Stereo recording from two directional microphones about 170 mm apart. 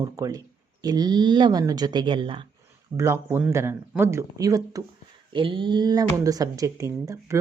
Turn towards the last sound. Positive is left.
turn(degrees=-20)  # may be behind; listen again after turning